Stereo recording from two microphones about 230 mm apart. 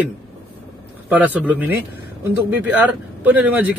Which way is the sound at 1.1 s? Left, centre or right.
Centre.